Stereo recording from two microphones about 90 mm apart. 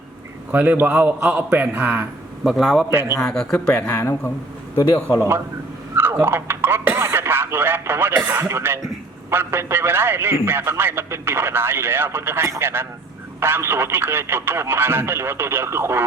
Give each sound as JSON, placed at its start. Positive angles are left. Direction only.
{"t": 0.5, "sound": "a man's voice", "side_deg": -20}
{"t": 2.4, "sound": "speech", "side_deg": -5}
{"t": 2.9, "sound": "a man's voice", "side_deg": -25}
{"t": 3.2, "sound": "speech", "side_deg": 5}
{"t": 3.8, "sound": "a man's voice", "side_deg": 25}
{"t": 6.2, "sound": "radio", "side_deg": -25}
{"t": 8.3, "sound": "a man's voice", "side_deg": -25}